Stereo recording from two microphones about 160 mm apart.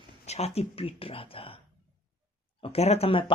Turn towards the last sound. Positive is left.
turn(degrees=40)  # may be behind; listen again after turning